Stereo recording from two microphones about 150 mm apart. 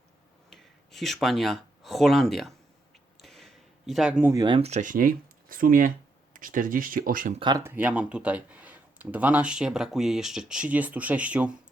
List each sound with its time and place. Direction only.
0.5 s speech: centre (ahead or behind)
3.2 s a sound: centre (ahead or behind)
4.3 s speech: 25° right (ahead or behind)
4.6 s speech: 55° right (ahead or behind)
7.3 s speech: 30° right (ahead or behind)
7.6 s speech: 10° right (ahead or behind)